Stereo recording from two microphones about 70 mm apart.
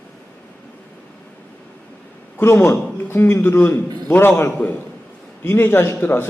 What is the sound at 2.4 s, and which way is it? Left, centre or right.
A man's voice, left.